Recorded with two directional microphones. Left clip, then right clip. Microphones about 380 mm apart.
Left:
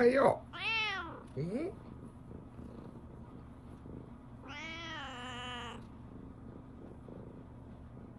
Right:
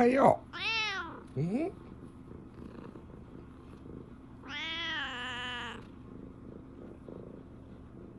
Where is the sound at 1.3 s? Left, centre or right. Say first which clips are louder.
Right 4 dB; centre.